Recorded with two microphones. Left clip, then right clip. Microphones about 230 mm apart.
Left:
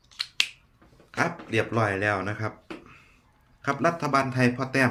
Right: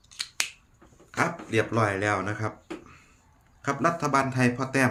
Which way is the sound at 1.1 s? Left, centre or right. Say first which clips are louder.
Even; centre.